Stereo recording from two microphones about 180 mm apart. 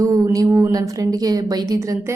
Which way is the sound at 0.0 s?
20° right (ahead or behind).